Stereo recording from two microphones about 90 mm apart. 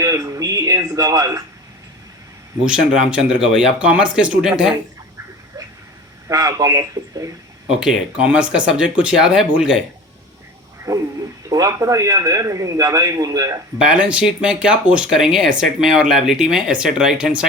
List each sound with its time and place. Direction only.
0.0 s a man's voice: 40° right (ahead or behind)
2.6 s speech: 10° right (ahead or behind)
6.2 s a man's voice: 40° right (ahead or behind)
7.7 s speech: 10° right (ahead or behind)
10.9 s a man's voice: 50° right (ahead or behind)
13.7 s speech: 10° right (ahead or behind)